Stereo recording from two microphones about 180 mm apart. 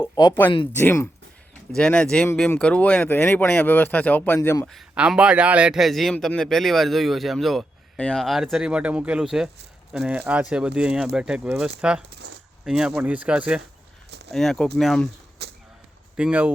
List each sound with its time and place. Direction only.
0.0 s a sound: 20° left (ahead or behind)
0.8 s speech: 15° left (ahead or behind)
4.4 s speech: 20° left (ahead or behind)
4.6 s a man's voice: centre (ahead or behind)
15.4 s a sound: 70° right (ahead or behind)
16.1 s speech: 5° right (ahead or behind)